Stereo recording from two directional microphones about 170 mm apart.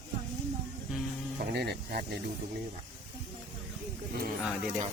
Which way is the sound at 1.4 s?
70° right (ahead or behind).